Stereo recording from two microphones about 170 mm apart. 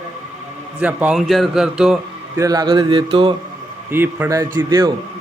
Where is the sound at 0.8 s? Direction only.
10° right (ahead or behind).